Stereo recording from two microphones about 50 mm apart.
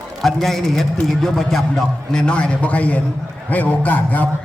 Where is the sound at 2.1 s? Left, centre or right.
Centre.